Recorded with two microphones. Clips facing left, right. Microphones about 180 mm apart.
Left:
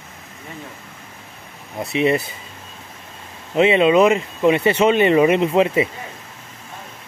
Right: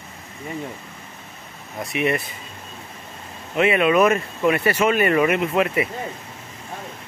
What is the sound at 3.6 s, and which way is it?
Speech, 25° left (ahead or behind).